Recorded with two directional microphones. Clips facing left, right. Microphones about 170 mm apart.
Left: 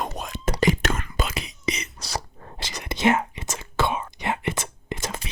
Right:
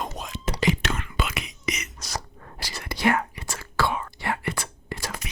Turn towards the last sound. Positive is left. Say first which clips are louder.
# left 3 dB
turn(degrees=25)  # may be behind; listen again after turning